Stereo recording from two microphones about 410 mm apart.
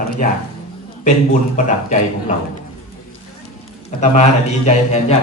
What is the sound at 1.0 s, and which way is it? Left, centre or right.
A man's voice, centre.